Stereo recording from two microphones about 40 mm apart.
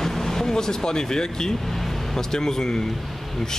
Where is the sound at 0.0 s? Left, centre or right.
Centre.